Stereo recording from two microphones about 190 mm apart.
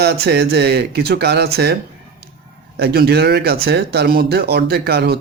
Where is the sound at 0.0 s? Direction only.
55° right (ahead or behind).